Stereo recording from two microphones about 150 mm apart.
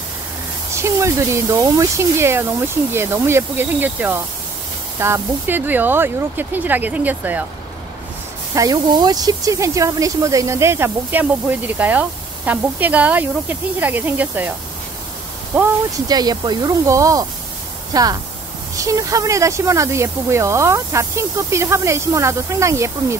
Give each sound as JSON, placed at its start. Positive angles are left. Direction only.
{"t": 0.8, "sound": "speech", "side_deg": -20}
{"t": 8.5, "sound": "speech", "side_deg": -25}
{"t": 15.5, "sound": "speech", "side_deg": -10}
{"t": 16.1, "sound": "speech", "side_deg": -25}